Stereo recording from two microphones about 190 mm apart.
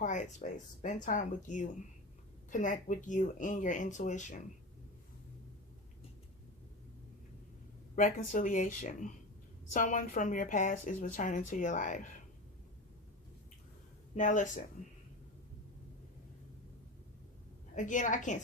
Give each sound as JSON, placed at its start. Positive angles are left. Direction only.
{"t": 0.0, "sound": "a sound", "side_deg": 40}
{"t": 1.0, "sound": "speech", "side_deg": 40}
{"t": 7.9, "sound": "speech", "side_deg": 45}
{"t": 14.2, "sound": "speech", "side_deg": 40}
{"t": 17.7, "sound": "speech", "side_deg": 40}